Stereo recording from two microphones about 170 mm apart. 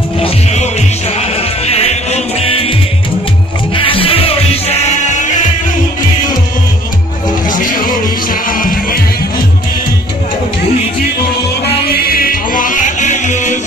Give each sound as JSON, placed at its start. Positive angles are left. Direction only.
{"t": 0.2, "sound": "music", "side_deg": 40}
{"t": 3.7, "sound": "music", "side_deg": 30}
{"t": 7.4, "sound": "music", "side_deg": 50}
{"t": 11.6, "sound": "music", "side_deg": 65}